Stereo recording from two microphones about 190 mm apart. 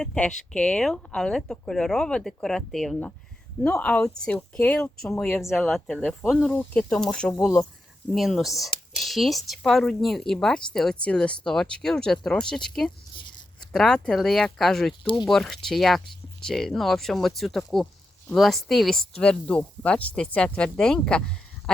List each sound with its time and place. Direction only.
0.0 s speech: 5° left (ahead or behind)
15.0 s speech: 25° left (ahead or behind)
15.3 s speech: centre (ahead or behind)